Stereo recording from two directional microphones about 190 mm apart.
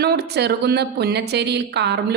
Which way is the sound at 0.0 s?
60° right (ahead or behind).